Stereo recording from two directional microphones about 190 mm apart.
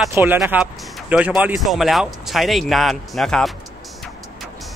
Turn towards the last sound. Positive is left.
turn(degrees=0)  # may be behind; listen again after turning